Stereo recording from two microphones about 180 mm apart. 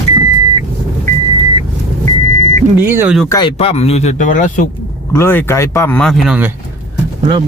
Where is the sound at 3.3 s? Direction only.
25° left (ahead or behind).